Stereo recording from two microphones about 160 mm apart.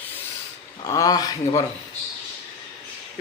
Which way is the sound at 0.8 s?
20° left (ahead or behind).